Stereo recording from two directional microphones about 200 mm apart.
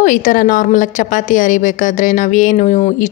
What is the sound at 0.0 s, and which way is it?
A woman's voice, 40° left (ahead or behind).